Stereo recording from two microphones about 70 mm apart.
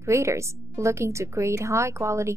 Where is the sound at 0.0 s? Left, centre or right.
Right.